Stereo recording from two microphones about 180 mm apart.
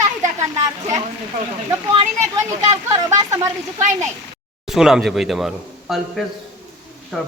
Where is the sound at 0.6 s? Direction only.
20° right (ahead or behind).